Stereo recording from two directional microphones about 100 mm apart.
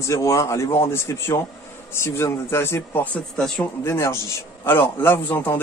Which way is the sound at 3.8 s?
25° left (ahead or behind).